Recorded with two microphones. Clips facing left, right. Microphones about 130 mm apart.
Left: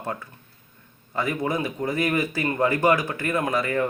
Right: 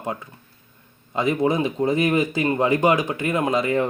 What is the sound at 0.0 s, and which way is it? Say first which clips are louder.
Speech: right 2 dB; 15° right (ahead or behind).